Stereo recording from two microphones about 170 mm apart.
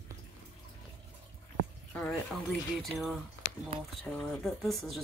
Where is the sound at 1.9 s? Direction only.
5° left (ahead or behind).